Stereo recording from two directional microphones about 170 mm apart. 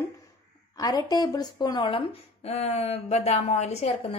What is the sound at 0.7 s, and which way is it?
Speech, 20° left (ahead or behind).